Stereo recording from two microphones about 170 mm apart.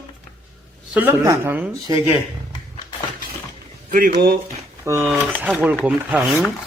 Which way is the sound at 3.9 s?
50° right (ahead or behind).